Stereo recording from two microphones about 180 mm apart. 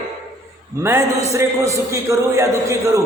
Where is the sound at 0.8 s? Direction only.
15° right (ahead or behind).